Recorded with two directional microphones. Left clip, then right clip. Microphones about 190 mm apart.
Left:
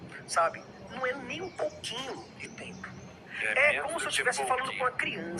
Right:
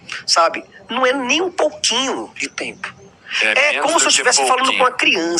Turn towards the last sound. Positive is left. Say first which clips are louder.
# right 17 dB
turn(degrees=-50)  # may be behind; listen again after turning